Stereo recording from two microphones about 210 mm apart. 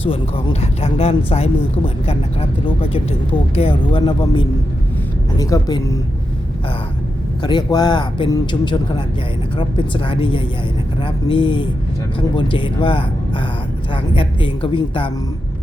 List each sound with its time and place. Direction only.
0.0 s speech: 25° left (ahead or behind)
7.4 s speech: 20° left (ahead or behind)